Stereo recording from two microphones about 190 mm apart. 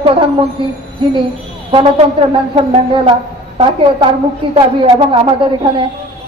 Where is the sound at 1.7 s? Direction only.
25° right (ahead or behind).